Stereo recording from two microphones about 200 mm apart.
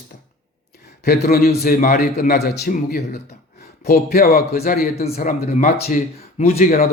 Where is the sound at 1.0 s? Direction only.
50° left (ahead or behind).